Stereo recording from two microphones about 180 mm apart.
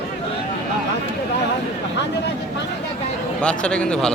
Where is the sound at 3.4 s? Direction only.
5° left (ahead or behind).